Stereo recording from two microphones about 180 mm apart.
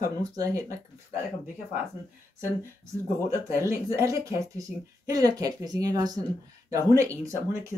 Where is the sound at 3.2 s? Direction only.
15° right (ahead or behind).